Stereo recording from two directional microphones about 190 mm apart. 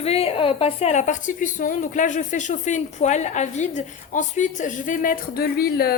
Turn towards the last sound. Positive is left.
turn(degrees=55)  # may be behind; listen again after turning